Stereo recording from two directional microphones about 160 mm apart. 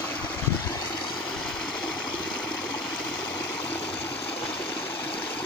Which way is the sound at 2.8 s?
5° left (ahead or behind).